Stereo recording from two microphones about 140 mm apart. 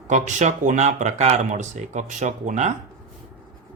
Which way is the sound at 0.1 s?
60° right (ahead or behind).